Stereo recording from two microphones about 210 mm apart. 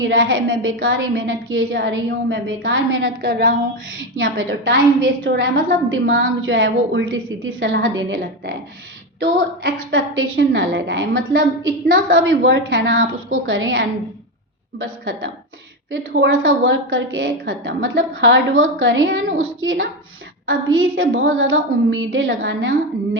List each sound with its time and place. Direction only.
0.0 s a woman's voice: 65° right (ahead or behind)
15.9 s a woman's voice: 60° right (ahead or behind)